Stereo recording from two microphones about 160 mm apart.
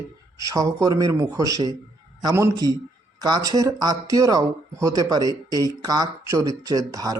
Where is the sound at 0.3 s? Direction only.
20° right (ahead or behind).